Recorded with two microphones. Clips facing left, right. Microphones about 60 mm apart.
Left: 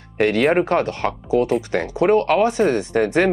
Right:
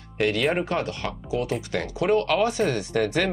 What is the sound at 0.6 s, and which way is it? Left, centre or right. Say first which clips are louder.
Speech: left 8 dB; left.